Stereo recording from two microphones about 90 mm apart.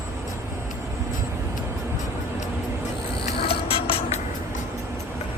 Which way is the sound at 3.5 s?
85° left.